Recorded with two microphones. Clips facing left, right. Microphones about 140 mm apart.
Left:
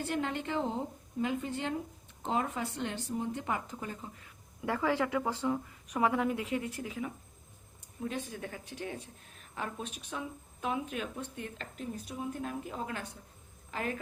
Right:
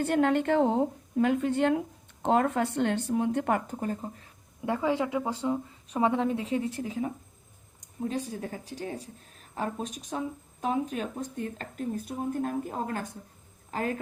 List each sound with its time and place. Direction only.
0.0 s speech: 55° right (ahead or behind); by 4.3 s 40° right (ahead or behind)
4.6 s a woman's voice: 20° right (ahead or behind); by 13.9 s 40° right (ahead or behind)